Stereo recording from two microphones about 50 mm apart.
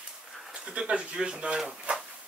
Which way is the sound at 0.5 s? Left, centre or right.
Centre.